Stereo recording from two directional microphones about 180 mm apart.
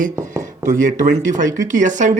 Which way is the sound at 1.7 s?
45° right (ahead or behind).